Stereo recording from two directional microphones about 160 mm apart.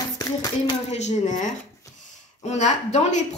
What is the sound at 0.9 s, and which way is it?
A woman's voice, 45° left (ahead or behind).